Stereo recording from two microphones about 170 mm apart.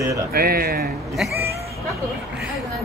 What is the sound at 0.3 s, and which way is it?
Speech, 60° right (ahead or behind).